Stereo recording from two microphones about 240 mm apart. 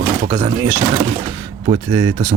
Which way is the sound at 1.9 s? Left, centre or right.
Right.